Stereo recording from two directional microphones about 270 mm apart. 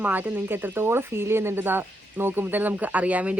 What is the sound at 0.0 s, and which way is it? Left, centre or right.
Speech, centre.